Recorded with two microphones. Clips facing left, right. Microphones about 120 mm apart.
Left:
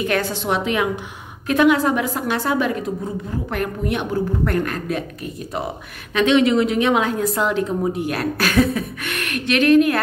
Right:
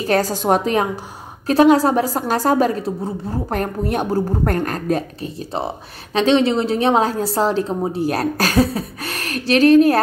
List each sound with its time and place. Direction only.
0.0 s a woman's voice: 35° right (ahead or behind)